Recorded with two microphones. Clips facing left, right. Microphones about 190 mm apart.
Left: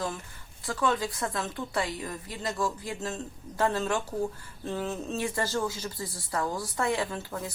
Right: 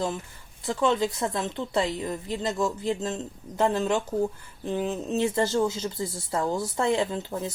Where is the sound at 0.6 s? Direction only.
20° right (ahead or behind).